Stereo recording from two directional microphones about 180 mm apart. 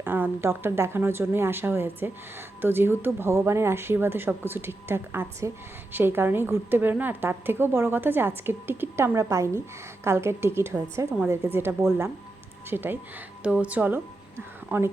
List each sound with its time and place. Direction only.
0.0 s speech: 10° right (ahead or behind)